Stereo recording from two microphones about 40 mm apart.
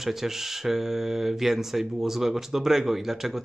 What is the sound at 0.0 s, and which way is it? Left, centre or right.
Speech, centre.